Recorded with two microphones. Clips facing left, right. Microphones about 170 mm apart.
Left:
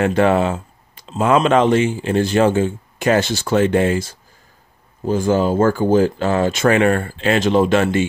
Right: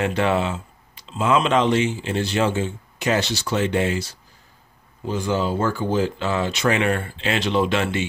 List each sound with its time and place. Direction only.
0.0 s speech: 50° left (ahead or behind)